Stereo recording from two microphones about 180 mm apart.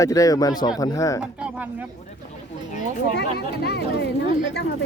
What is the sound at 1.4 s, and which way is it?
Speech, 10° right (ahead or behind).